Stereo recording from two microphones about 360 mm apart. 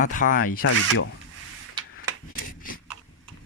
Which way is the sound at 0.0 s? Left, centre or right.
Left.